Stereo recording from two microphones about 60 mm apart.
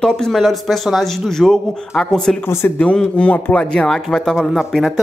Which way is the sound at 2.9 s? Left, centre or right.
Left.